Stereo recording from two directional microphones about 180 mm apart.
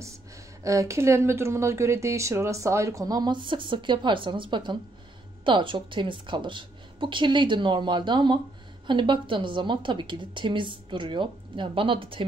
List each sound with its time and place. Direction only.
0.7 s a woman's voice: 15° right (ahead or behind)